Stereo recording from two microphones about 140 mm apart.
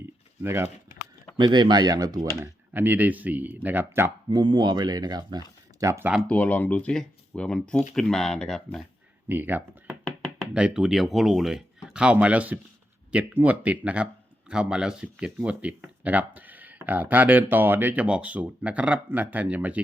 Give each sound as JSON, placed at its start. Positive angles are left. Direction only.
{"t": 0.4, "sound": "speech", "side_deg": -20}
{"t": 1.4, "sound": "speech", "side_deg": -30}
{"t": 2.4, "sound": "speech", "side_deg": -15}
{"t": 4.4, "sound": "speech", "side_deg": -30}
{"t": 6.2, "sound": "speech", "side_deg": 10}
{"t": 9.3, "sound": "speech", "side_deg": -15}